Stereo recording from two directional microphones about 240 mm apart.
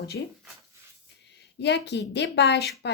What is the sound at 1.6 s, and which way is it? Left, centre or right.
Speech, left.